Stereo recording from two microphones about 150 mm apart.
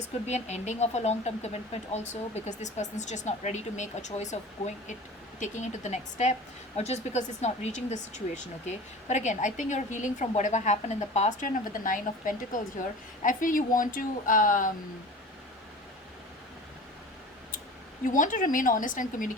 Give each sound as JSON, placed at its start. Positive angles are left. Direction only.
{"t": 0.3, "sound": "a woman's voice", "side_deg": 50}
{"t": 18.0, "sound": "a woman's voice", "side_deg": 60}